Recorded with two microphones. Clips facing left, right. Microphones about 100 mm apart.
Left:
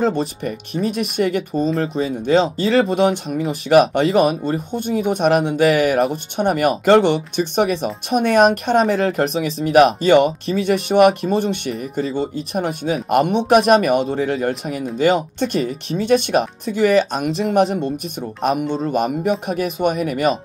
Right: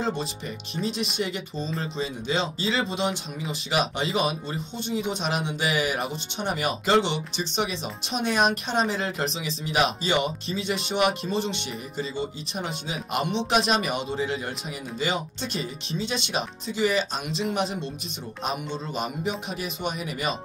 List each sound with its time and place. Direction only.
0.0 s speech: 55° left (ahead or behind)